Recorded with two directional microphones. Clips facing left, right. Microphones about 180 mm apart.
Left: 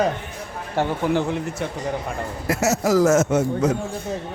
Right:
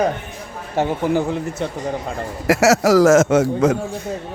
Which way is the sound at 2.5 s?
90° right.